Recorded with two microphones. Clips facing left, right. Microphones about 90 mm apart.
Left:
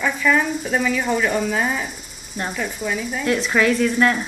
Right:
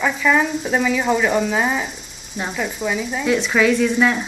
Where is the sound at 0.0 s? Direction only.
15° right (ahead or behind).